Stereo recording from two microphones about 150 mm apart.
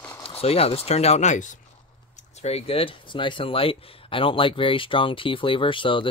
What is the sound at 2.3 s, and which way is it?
Speech, 45° left (ahead or behind).